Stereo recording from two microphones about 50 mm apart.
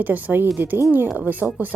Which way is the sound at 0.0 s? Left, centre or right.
Right.